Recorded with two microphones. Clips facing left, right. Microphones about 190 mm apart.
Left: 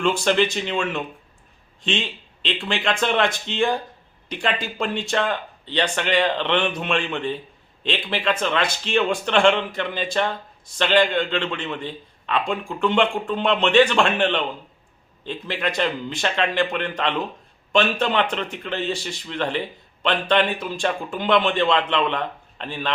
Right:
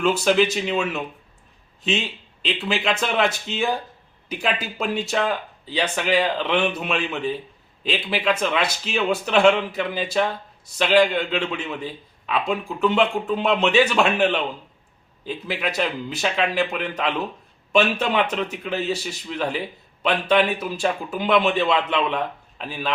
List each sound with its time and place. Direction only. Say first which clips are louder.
0.0 s a man's voice: right 1 dB; 5° right (ahead or behind)